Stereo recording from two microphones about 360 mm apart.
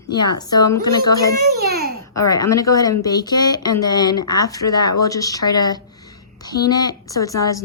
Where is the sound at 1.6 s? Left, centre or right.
Right.